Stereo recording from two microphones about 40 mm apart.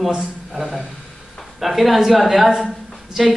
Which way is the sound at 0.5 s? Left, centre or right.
Centre.